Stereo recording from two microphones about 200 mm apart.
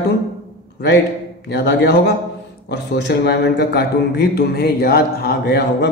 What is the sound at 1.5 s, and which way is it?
A man's voice, 55° left (ahead or behind).